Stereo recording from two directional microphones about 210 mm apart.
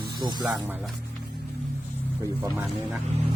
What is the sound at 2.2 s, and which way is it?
Speech, 15° right (ahead or behind).